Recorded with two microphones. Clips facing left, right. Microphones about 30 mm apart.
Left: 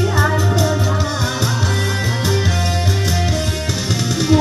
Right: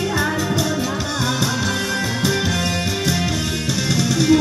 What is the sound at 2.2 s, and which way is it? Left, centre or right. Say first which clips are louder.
Music: even; centre.